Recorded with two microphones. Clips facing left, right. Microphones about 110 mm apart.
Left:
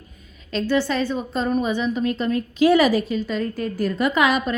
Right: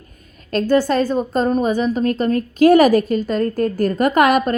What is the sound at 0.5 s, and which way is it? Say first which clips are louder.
A woman's voice: right 6 dB; 45° right (ahead or behind).